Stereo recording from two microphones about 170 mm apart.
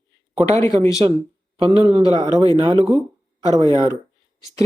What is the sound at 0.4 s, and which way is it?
Speech, 20° left (ahead or behind).